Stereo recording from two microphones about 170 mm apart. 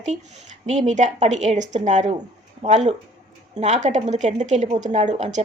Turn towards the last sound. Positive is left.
turn(degrees=-45)  # may be behind; listen again after turning